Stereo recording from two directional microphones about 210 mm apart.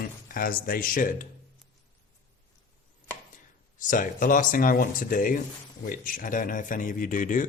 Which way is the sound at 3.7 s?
40° left (ahead or behind).